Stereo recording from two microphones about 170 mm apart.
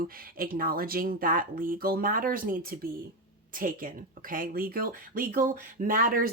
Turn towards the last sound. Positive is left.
turn(degrees=-55)  # may be behind; listen again after turning